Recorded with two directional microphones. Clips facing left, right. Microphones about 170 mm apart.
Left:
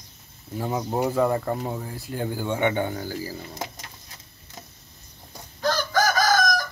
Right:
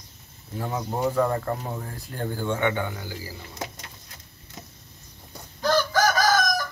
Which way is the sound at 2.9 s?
40° left (ahead or behind).